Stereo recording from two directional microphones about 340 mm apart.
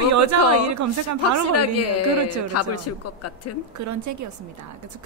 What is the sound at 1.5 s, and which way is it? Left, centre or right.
Speech, left.